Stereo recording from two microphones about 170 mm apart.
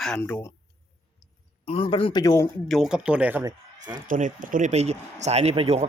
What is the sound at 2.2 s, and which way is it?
Speech, 20° left (ahead or behind).